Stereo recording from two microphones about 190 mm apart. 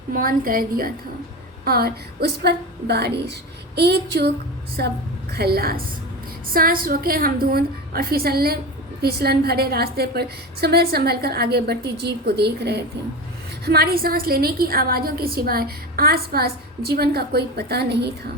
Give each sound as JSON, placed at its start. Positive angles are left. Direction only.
{"t": 0.1, "sound": "a woman's voice", "side_deg": -50}